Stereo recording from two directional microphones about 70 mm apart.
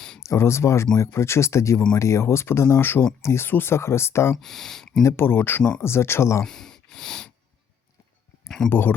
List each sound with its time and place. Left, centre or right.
0.2 s speech: left
4.4 s speech: centre
5.0 s speech: left
6.4 s a sound: centre
8.4 s speech: centre
8.7 s speech: left